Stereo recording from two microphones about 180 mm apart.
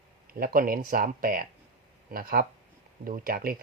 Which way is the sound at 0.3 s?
55° right (ahead or behind).